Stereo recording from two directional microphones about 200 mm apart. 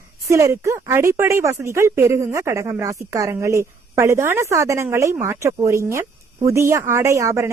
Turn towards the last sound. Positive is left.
turn(degrees=-15)  # may be behind; listen again after turning